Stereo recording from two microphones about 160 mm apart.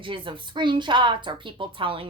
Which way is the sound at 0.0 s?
30° right (ahead or behind).